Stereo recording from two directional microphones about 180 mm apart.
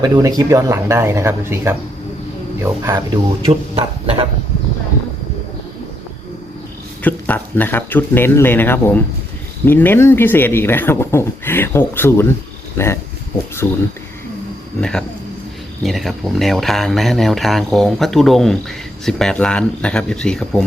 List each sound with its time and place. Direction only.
0.0 s speech: 20° right (ahead or behind)
3.4 s speech: 35° right (ahead or behind)
7.0 s speech: 10° left (ahead or behind)
14.8 s speech: 5° left (ahead or behind)